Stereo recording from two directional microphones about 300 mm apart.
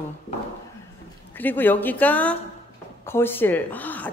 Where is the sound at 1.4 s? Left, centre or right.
Centre.